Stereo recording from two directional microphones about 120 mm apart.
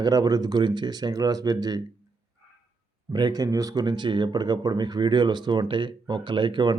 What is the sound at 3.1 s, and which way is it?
Speech, 35° right (ahead or behind).